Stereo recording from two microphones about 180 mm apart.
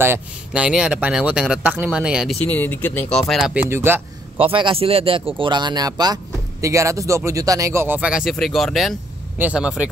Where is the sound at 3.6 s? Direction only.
10° right (ahead or behind).